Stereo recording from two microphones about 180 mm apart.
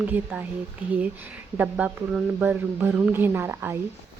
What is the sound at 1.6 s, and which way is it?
Speech, 5° right (ahead or behind).